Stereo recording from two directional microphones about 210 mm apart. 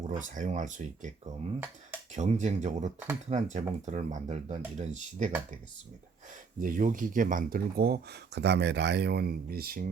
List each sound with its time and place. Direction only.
0.1 s speech: 35° right (ahead or behind)
2.1 s speech: 35° right (ahead or behind)
6.6 s speech: 40° right (ahead or behind)